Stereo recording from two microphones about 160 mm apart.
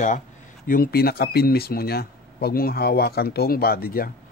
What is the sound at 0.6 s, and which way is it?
Speech, 65° left (ahead or behind).